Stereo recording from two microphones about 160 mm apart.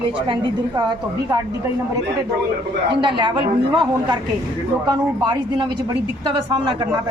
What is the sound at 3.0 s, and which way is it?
Speech, 30° right (ahead or behind).